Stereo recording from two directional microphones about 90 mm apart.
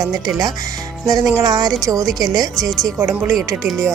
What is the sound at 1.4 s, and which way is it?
Music, 45° right (ahead or behind).